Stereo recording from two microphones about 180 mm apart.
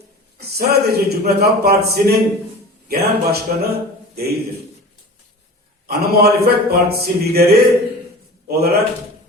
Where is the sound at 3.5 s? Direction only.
55° right (ahead or behind).